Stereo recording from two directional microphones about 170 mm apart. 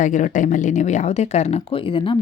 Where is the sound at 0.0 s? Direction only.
50° left (ahead or behind).